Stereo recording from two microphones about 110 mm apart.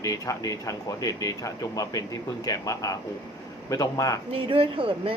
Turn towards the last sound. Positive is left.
turn(degrees=-55)  # may be behind; listen again after turning